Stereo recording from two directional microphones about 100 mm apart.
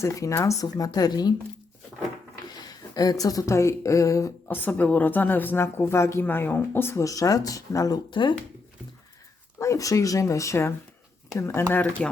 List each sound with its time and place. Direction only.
0.0 s speech: 30° left (ahead or behind)
2.5 s speech: 45° left (ahead or behind)
4.4 s a woman's voice: 20° left (ahead or behind); by 8.0 s 35° left (ahead or behind)
8.1 s speech: 50° left (ahead or behind)
9.6 s a woman's voice: 30° left (ahead or behind)